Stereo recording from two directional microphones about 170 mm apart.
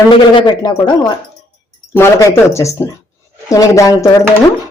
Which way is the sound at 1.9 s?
15° left (ahead or behind).